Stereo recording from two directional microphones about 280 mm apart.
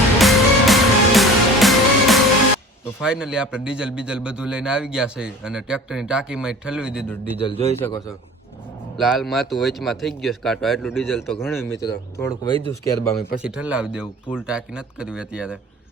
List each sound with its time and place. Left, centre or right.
0.2 s music: centre
3.0 s a man's voice: centre
7.3 s speech: centre
9.0 s a man's voice: centre
13.3 s a man's voice: centre